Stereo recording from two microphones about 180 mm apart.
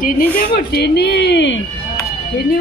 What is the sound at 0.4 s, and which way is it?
Speech, 55° left (ahead or behind).